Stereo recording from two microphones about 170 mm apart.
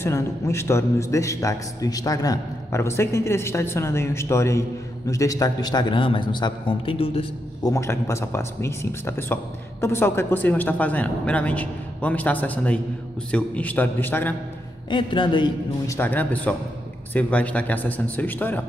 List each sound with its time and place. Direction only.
0.0 s a man's voice: 15° left (ahead or behind); by 7.7 s 30° left (ahead or behind)
7.7 s a man's voice: 15° left (ahead or behind)
14.9 s a man's voice: 30° left (ahead or behind)
16.0 s a man's voice: 10° left (ahead or behind)